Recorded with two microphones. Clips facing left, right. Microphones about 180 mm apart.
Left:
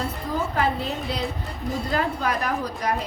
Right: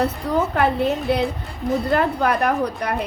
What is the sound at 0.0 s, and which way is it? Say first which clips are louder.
A woman's voice: right 7 dB; 65° right (ahead or behind).